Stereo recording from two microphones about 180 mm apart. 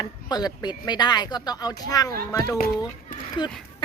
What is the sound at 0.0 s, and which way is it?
Speech, 20° left (ahead or behind).